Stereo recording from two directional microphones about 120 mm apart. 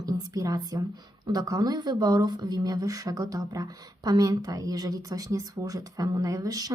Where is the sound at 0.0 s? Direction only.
30° right (ahead or behind).